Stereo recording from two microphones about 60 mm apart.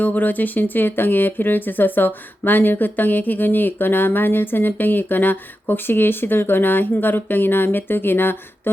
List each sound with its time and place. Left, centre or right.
0.0 s speech: left